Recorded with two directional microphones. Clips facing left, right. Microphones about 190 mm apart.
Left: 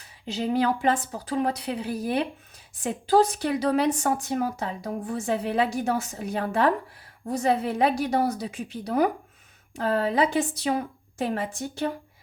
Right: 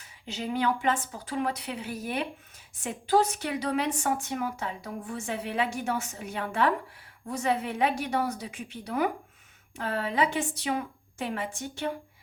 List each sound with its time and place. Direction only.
0.0 s speech: 35° left (ahead or behind)